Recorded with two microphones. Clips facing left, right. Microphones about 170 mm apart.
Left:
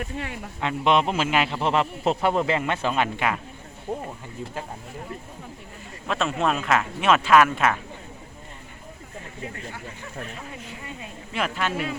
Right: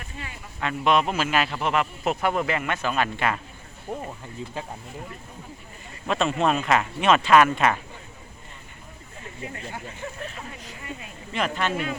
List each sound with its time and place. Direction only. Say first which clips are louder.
0.1 s speech: left 7 dB; 65° left (ahead or behind)
0.6 s speech: left 1 dB; 20° left (ahead or behind)
6.1 s speech: right 2 dB; centre (ahead or behind)
11.3 s speech: right 1 dB; 5° left (ahead or behind)